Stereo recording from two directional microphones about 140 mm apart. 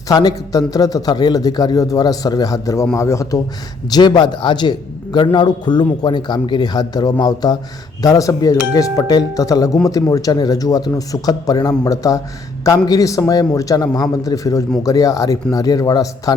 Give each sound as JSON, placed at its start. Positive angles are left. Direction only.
{"t": 0.1, "sound": "a man's voice", "side_deg": 25}